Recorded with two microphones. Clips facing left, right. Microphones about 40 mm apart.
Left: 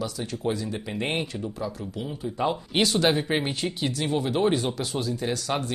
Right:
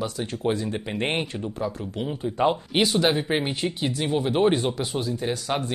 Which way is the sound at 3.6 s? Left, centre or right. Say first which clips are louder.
Right 2 dB; centre.